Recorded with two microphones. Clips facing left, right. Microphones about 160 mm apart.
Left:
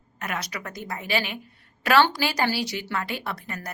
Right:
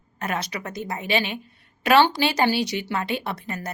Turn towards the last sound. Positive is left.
turn(degrees=-20)  # may be behind; listen again after turning